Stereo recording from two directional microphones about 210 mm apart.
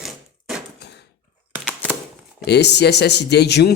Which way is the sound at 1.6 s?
5° right (ahead or behind).